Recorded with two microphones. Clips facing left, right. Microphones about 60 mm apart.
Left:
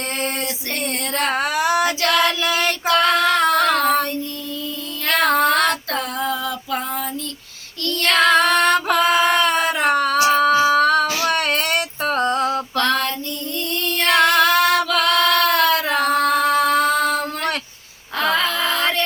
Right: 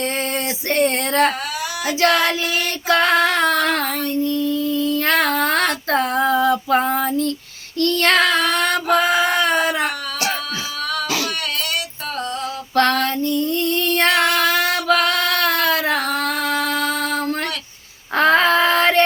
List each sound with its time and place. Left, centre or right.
0.8 s female singing: right
2.0 s a sound: right
2.9 s female singing: right
5.0 s child singing: right
5.4 s female singing: right
7.9 s child singing: right
8.2 s music: left
9.0 s a sound: left
12.7 s music: right
14.1 s female singing: left
14.8 s music: right
15.1 s singing: left
15.5 s a sound: left
18.2 s a sound: right